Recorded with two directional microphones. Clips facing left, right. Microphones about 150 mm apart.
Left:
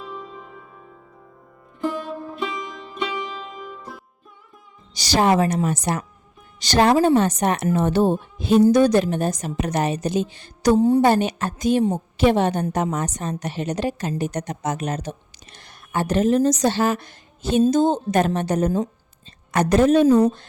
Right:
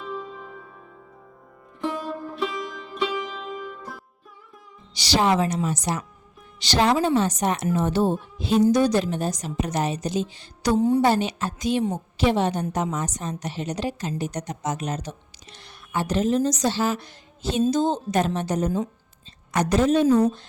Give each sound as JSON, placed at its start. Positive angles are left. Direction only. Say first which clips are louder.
{"t": 0.0, "sound": "music", "louder": "right 2 dB", "side_deg": 0}
{"t": 1.8, "sound": "music", "louder": "left 2 dB", "side_deg": 0}
{"t": 4.9, "sound": "a woman's voice", "louder": "left 3 dB", "side_deg": 45}
{"t": 10.8, "sound": "a woman's voice", "louder": "left 2 dB", "side_deg": 35}
{"t": 11.0, "sound": "a woman's voice", "louder": "left 3 dB", "side_deg": 55}